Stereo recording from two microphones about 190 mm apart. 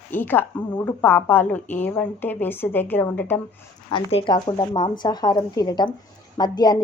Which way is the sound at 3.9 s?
25° left (ahead or behind).